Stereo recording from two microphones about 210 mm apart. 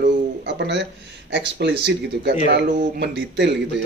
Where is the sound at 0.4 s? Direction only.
55° right (ahead or behind).